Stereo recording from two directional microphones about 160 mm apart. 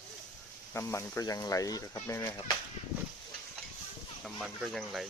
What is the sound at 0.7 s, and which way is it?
Speech, 15° left (ahead or behind).